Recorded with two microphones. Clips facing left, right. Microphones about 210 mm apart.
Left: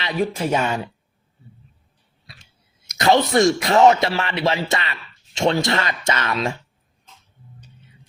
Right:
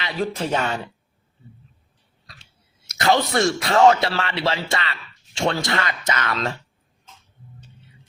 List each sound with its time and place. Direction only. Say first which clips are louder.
0.0 s speech: left 3 dB; 10° left (ahead or behind)
3.1 s speech: left 4 dB; 20° left (ahead or behind)
6.3 s speech: left 2 dB; 10° left (ahead or behind)